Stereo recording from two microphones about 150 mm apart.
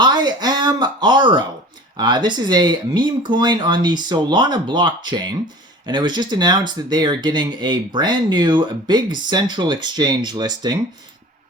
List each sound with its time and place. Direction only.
0.0 s speech: 30° right (ahead or behind)